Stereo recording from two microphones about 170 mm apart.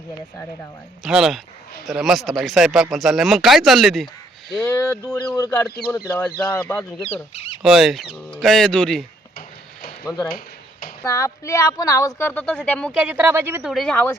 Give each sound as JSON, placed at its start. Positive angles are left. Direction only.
{"t": 1.0, "sound": "speech", "side_deg": 0}
{"t": 4.7, "sound": "speech", "side_deg": 15}
{"t": 7.0, "sound": "speech", "side_deg": 40}
{"t": 7.6, "sound": "speech", "side_deg": -5}
{"t": 10.3, "sound": "a sound", "side_deg": 60}
{"t": 11.0, "sound": "speech", "side_deg": 20}
{"t": 12.9, "sound": "speech", "side_deg": -5}